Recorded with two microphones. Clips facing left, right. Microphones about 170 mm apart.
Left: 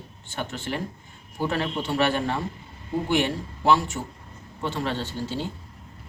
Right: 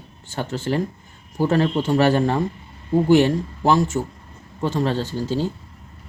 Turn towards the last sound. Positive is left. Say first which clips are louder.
# right 7 dB
turn(degrees=-40)  # may be behind; listen again after turning